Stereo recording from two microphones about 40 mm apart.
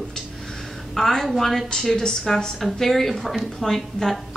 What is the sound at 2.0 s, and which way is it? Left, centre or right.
A woman's voice, centre.